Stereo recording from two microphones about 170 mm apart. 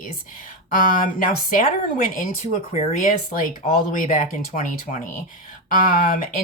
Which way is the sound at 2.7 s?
45° left (ahead or behind).